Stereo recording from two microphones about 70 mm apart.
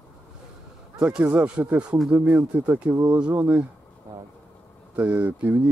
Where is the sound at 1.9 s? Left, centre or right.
Right.